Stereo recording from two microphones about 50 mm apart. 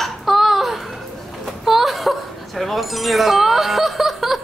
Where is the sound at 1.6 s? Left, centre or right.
Centre.